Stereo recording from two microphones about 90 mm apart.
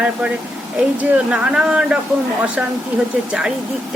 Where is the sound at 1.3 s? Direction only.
10° right (ahead or behind).